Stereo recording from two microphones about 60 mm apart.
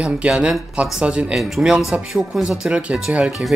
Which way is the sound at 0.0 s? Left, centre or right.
Centre.